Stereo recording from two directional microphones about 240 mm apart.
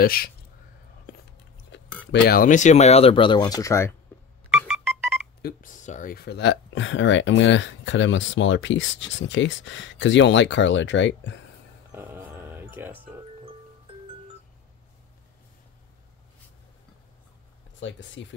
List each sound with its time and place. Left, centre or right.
0.0 s speech: left
1.7 s speech: left; by 3.9 s centre
4.5 s music: centre
5.4 s speech: left
11.9 s music: centre
17.7 s speech: left